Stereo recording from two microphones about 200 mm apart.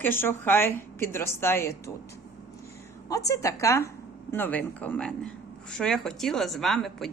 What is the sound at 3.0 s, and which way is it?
A woman's voice, 15° left (ahead or behind).